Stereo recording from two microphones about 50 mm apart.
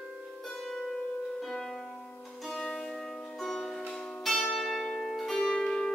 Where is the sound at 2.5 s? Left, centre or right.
Centre.